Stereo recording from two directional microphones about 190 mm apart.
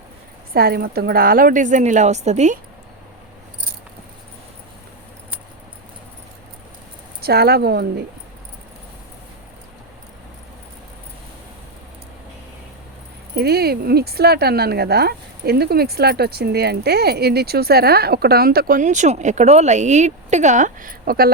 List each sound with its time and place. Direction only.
0.5 s a woman's voice: 55° right (ahead or behind); by 2.6 s 35° right (ahead or behind)
7.2 s speech: 55° right (ahead or behind)
13.3 s speech: 55° right (ahead or behind)